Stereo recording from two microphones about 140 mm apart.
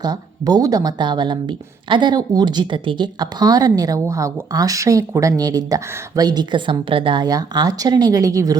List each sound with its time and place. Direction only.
0.0 s speech: 30° right (ahead or behind)